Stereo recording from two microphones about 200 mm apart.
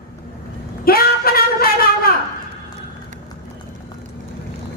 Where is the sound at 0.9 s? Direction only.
50° left (ahead or behind).